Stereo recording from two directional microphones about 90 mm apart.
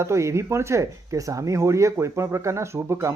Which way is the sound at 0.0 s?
30° right (ahead or behind).